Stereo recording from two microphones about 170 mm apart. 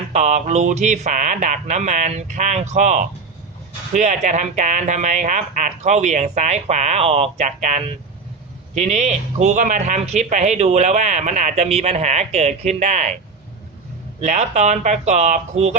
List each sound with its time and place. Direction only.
0.1 s speech: 45° right (ahead or behind)
14.2 s speech: 45° right (ahead or behind)